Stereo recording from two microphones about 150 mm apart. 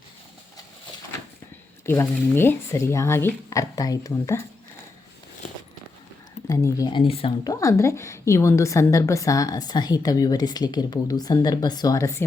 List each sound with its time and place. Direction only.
1.9 s a woman's voice: 15° left (ahead or behind)
6.5 s a woman's voice: 20° left (ahead or behind); by 7.3 s 35° left (ahead or behind)
7.4 s a woman's voice: 20° left (ahead or behind)